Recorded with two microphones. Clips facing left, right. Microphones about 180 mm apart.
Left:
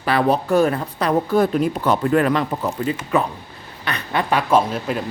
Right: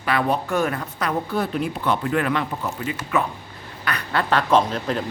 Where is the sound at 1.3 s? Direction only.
45° left (ahead or behind).